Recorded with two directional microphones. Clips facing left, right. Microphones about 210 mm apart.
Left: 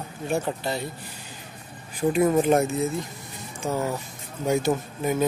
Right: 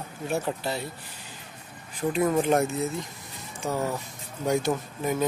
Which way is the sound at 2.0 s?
15° left (ahead or behind).